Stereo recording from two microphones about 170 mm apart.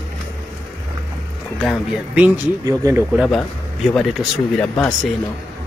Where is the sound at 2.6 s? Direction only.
20° right (ahead or behind).